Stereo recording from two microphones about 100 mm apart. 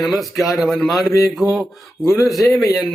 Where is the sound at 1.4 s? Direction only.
15° right (ahead or behind).